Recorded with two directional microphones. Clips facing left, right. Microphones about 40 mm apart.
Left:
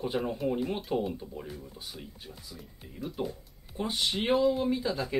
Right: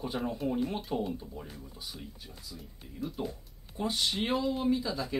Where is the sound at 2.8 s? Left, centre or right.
Centre.